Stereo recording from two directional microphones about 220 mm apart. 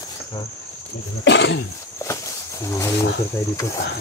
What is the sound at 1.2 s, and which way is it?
Speech, 55° left (ahead or behind).